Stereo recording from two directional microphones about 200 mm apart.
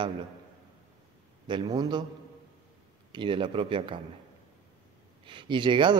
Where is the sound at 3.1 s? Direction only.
25° right (ahead or behind).